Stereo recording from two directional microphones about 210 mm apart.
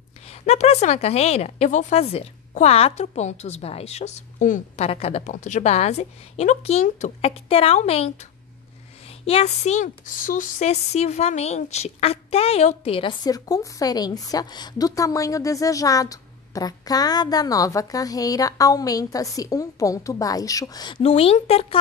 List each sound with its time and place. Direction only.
0.3 s speech: 30° left (ahead or behind)